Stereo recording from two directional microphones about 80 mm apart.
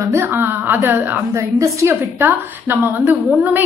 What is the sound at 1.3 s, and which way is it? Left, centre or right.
Speech, right.